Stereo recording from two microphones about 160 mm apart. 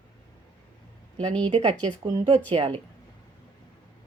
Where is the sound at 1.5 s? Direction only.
40° right (ahead or behind).